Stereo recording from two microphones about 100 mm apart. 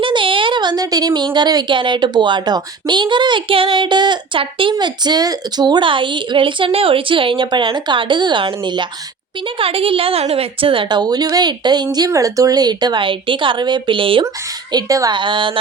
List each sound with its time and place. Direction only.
0.0 s speech: 55° right (ahead or behind)
4.7 s speech: 45° right (ahead or behind)
9.6 s speech: 65° right (ahead or behind)
14.7 s a woman's voice: 40° right (ahead or behind)
15.1 s music: 55° right (ahead or behind)